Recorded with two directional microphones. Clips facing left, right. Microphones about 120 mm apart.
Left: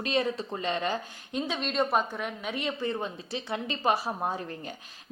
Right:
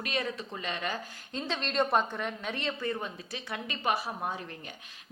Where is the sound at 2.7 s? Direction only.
25° left (ahead or behind).